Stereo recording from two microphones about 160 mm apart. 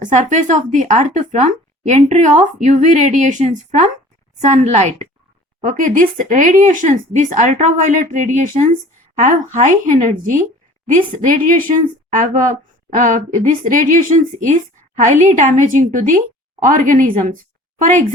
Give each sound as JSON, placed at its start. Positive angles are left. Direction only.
{"t": 0.0, "sound": "a woman's voice", "side_deg": -50}